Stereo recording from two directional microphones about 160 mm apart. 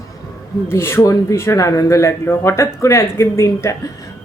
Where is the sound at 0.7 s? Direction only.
15° left (ahead or behind).